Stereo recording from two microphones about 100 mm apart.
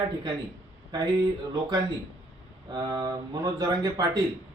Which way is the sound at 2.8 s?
40° right (ahead or behind).